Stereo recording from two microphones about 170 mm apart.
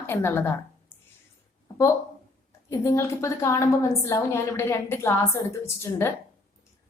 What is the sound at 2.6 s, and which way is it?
A woman's voice, 15° left (ahead or behind).